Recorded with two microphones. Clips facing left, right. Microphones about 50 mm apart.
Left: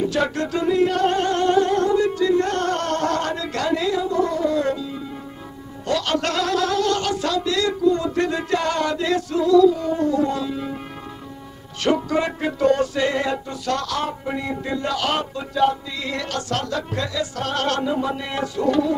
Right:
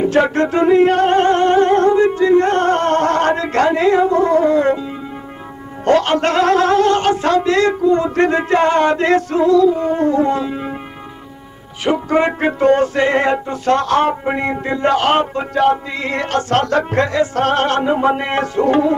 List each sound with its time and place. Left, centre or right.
0.0 s music: right
5.9 s music: right
12.1 s music: right